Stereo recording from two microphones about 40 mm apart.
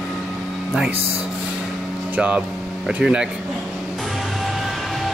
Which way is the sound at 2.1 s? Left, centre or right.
Right.